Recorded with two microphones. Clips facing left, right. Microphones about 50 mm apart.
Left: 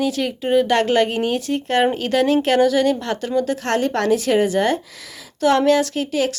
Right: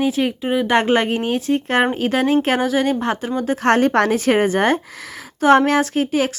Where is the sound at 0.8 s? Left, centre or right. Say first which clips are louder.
Even; right.